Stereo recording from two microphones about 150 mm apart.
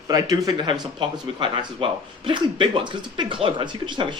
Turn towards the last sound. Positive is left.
turn(degrees=-30)  # may be behind; listen again after turning